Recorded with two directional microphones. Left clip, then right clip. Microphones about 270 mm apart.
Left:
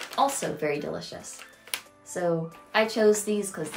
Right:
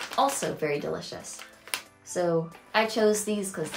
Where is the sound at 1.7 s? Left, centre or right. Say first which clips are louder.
Right 3 dB; centre.